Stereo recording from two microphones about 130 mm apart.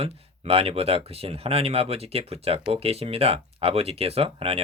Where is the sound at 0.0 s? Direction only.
50° right (ahead or behind).